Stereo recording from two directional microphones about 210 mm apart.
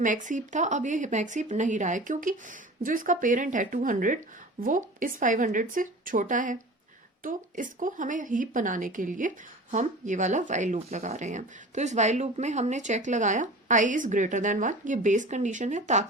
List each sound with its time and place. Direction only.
0.0 s speech: 35° right (ahead or behind)